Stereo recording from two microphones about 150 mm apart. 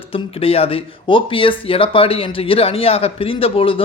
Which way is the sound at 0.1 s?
40° left (ahead or behind).